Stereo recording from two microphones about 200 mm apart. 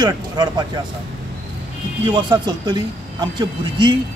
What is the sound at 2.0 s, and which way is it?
Speech, 20° right (ahead or behind).